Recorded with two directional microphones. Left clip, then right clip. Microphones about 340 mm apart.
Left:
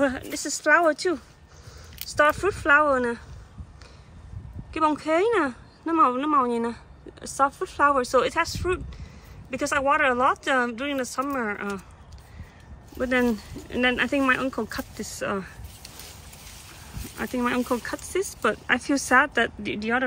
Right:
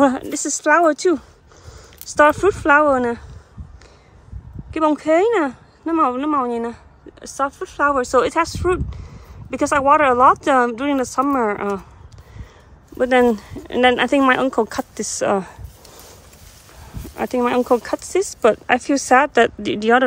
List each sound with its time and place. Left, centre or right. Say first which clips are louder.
0.0 s speech: right 8 dB; centre
2.2 s speech: right 7 dB; centre
4.7 s speech: right 6 dB; centre
13.0 s speech: right 9 dB; centre
17.1 s speech: right 8 dB; centre